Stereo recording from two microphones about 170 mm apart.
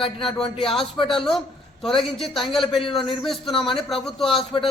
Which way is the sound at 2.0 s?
Centre (ahead or behind).